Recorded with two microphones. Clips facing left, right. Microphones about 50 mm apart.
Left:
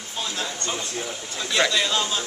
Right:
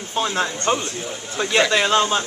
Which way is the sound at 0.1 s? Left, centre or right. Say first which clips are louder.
Right 8 dB; right.